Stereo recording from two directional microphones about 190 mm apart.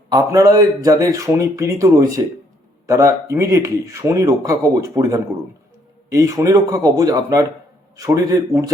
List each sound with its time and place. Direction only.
0.1 s a man's voice: 20° right (ahead or behind)